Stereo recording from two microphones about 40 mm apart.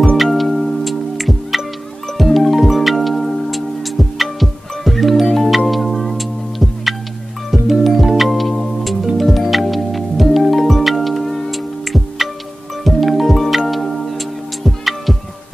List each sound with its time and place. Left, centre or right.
0.2 s music: centre